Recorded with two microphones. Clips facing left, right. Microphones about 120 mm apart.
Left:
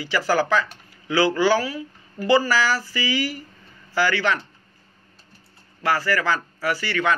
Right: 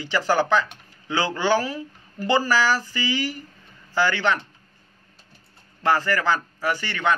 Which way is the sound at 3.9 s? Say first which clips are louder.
Even; 20° right (ahead or behind).